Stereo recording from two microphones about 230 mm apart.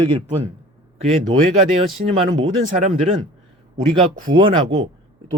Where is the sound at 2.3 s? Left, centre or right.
Right.